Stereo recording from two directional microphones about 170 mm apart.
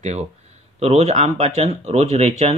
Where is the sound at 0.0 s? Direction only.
40° right (ahead or behind).